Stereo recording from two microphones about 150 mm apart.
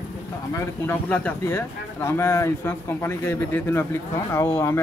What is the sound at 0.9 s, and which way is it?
Speech, 10° left (ahead or behind).